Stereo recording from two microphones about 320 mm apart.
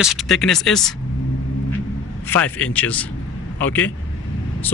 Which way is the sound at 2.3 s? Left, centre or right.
Centre.